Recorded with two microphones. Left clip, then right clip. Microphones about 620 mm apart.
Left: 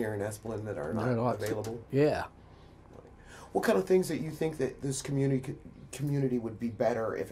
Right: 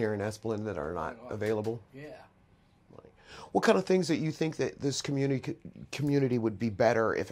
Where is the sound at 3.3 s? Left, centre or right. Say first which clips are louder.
Right 3 dB; right.